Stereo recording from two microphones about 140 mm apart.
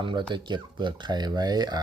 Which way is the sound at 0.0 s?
35° right (ahead or behind).